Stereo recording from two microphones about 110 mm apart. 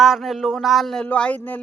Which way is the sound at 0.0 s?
Centre (ahead or behind).